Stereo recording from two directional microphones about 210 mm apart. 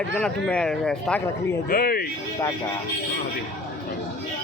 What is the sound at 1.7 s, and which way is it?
Speech, 45° left (ahead or behind).